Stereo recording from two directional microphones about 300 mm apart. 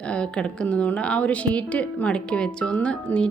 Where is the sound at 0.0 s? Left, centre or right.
Centre.